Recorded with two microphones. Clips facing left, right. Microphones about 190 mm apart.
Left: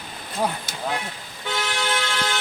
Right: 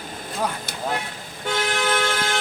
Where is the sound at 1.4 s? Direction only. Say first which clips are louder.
Right 3 dB; 50° right (ahead or behind).